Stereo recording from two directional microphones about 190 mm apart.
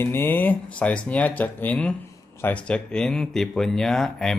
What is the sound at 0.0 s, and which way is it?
Speech, 10° left (ahead or behind).